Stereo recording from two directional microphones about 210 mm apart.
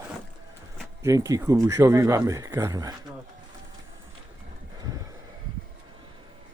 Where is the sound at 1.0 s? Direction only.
15° right (ahead or behind).